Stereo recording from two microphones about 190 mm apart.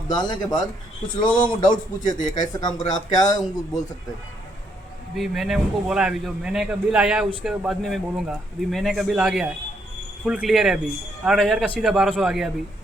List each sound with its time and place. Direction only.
0.1 s a man's voice: 20° left (ahead or behind)
2.0 s speech: 40° left (ahead or behind)
2.4 s a man's voice: 20° left (ahead or behind)
5.1 s speech: centre (ahead or behind)